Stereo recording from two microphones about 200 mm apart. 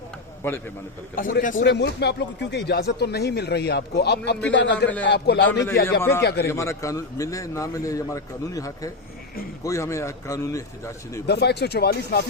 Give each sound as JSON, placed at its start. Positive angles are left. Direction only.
{"t": 0.4, "sound": "a man's voice", "side_deg": 10}
{"t": 1.1, "sound": "a man's voice", "side_deg": 45}
{"t": 1.6, "sound": "speech", "side_deg": 60}
{"t": 6.0, "sound": "a man's voice", "side_deg": 10}
{"t": 6.2, "sound": "speech", "side_deg": 55}
{"t": 6.5, "sound": "a man's voice", "side_deg": 15}
{"t": 11.3, "sound": "speech", "side_deg": 55}